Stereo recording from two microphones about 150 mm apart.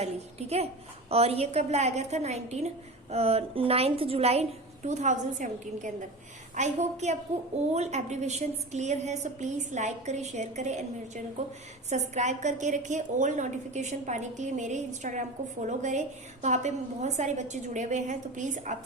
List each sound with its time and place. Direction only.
0.0 s a woman's voice: 45° right (ahead or behind)